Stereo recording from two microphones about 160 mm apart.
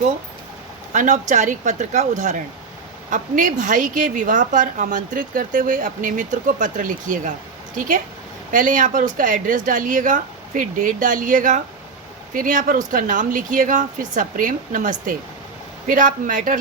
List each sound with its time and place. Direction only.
0.9 s a woman's voice: 50° right (ahead or behind)